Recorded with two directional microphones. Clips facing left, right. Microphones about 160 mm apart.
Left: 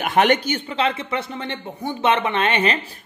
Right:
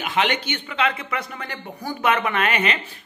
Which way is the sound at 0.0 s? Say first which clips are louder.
Left 6 dB; 50° left (ahead or behind).